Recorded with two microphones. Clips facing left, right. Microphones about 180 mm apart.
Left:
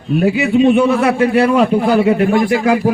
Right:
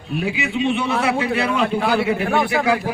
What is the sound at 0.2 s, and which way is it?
Speech, 45° left (ahead or behind).